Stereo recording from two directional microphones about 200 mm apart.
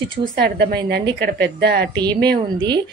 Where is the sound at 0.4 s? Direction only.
55° right (ahead or behind).